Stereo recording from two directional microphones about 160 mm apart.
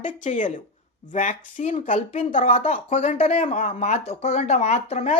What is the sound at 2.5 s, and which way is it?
Speech, 35° left (ahead or behind).